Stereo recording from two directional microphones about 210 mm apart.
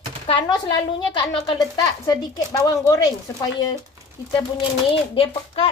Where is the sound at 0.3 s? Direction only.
25° left (ahead or behind).